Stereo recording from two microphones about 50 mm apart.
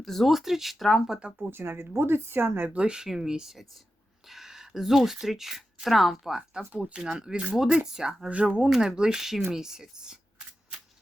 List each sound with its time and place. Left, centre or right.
0.0 s speech: centre
0.3 s speech: centre
1.5 s speech: right
2.7 s speech: centre
6.7 s speech: centre